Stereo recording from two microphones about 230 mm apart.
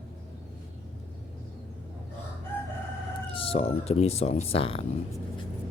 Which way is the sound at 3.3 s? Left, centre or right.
Left.